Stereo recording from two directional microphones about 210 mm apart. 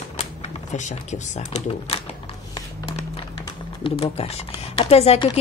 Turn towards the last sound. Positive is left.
turn(degrees=30)  # may be behind; listen again after turning